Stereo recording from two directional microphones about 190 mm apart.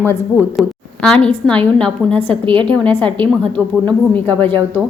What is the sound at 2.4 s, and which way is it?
Speech, 25° right (ahead or behind).